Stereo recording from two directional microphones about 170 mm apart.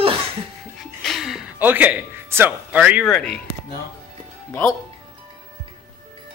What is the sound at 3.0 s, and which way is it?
Speech, 5° left (ahead or behind).